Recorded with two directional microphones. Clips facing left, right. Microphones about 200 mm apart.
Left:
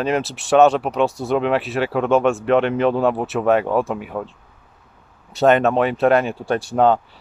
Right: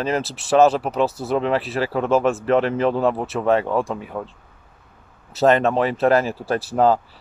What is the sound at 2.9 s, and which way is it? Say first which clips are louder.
Speech: left 2 dB; centre (ahead or behind).